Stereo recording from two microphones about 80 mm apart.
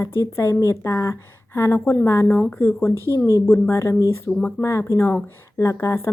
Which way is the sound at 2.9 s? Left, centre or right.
Right.